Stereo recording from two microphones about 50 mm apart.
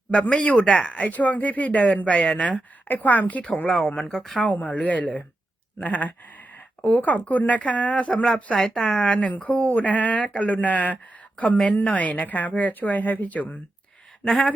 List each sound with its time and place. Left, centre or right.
0.4 s speech: left
2.8 s speech: left
3.7 s speech: centre
4.4 s speech: left
8.5 s speech: centre
8.8 s speech: left